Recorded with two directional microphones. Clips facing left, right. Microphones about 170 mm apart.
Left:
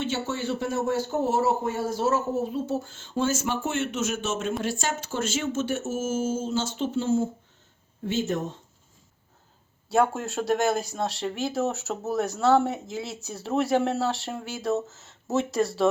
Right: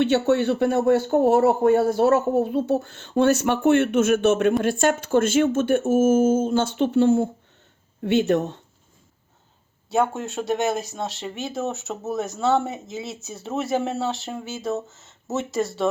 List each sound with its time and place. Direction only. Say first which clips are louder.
0.0 s speech: right 10 dB; 65° right (ahead or behind)
9.9 s speech: right 1 dB; centre (ahead or behind)